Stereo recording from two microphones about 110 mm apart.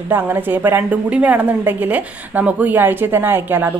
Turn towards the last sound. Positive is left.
turn(degrees=-20)  # may be behind; listen again after turning